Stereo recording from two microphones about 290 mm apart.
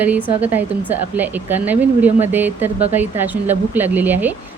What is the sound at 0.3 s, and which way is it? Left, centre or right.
A woman's voice, centre.